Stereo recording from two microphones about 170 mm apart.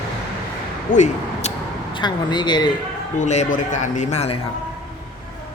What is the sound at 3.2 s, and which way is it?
A man's voice, 45° left (ahead or behind).